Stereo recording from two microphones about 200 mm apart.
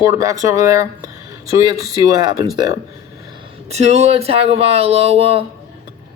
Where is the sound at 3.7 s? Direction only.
35° right (ahead or behind).